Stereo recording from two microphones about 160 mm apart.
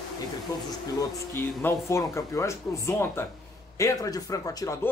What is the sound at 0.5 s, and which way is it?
Speech, 20° left (ahead or behind).